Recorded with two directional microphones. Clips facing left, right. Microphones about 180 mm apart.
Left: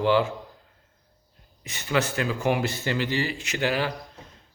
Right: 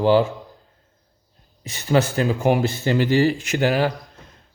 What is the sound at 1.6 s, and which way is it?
Speech, 35° right (ahead or behind).